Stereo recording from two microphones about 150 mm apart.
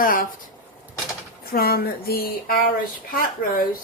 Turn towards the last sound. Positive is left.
turn(degrees=75)  # may be behind; listen again after turning